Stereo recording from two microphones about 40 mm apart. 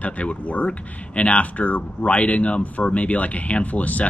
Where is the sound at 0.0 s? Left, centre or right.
Left.